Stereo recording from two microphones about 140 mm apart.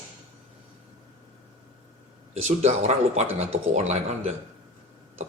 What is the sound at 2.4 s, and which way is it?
Speech, 50° right (ahead or behind).